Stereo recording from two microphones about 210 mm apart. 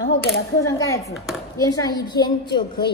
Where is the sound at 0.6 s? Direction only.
15° left (ahead or behind).